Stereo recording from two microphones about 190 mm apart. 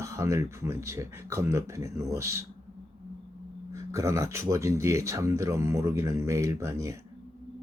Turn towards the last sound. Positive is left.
turn(degrees=-15)  # may be behind; listen again after turning